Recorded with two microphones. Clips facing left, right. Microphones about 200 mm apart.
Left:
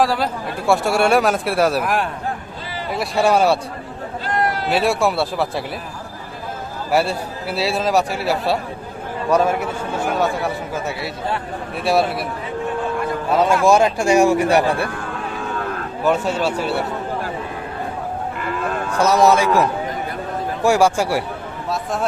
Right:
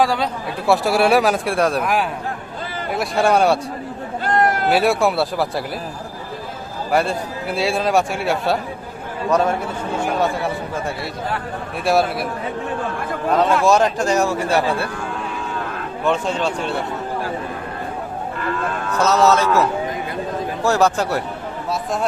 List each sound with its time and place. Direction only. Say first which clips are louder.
0.0 s a man's voice: even; centre (ahead or behind)
4.2 s a sound: right 3 dB; 50° right (ahead or behind)
4.7 s a man's voice: left 1 dB; centre (ahead or behind)
6.9 s a man's voice: even; 5° left (ahead or behind)
13.3 s speech: left 1 dB; 10° left (ahead or behind)
16.0 s speech: left 1 dB; 5° left (ahead or behind)
18.9 s speech: left 1 dB; 10° left (ahead or behind)